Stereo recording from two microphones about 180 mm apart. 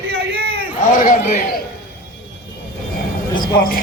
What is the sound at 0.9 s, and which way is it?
Speech, 45° left (ahead or behind).